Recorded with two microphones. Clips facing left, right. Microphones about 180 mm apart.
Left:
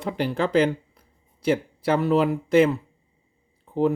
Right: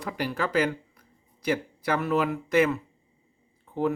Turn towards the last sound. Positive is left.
turn(degrees=30)  # may be behind; listen again after turning